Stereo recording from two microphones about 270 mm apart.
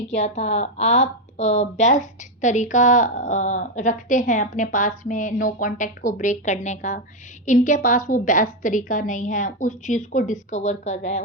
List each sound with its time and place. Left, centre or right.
0.1 s a woman's voice: left